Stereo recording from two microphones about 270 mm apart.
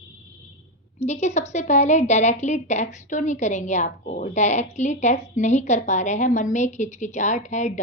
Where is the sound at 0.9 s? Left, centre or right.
Left.